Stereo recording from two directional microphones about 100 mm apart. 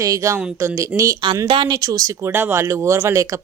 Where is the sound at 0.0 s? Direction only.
35° right (ahead or behind).